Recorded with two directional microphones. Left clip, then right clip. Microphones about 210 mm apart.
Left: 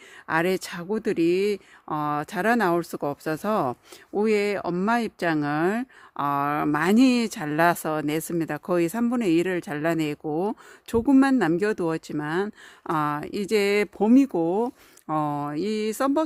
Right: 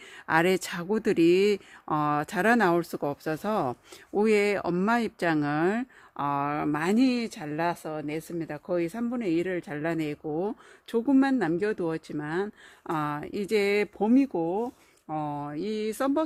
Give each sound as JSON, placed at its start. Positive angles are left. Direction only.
{"t": 0.3, "sound": "speech", "side_deg": 5}